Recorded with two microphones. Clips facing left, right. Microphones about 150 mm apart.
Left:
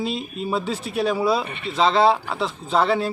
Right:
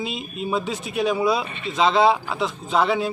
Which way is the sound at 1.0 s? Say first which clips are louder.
Even; centre (ahead or behind).